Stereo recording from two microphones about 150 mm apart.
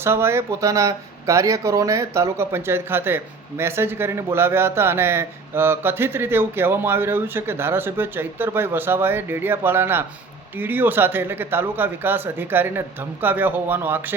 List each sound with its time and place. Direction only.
0.0 s speech: 15° right (ahead or behind)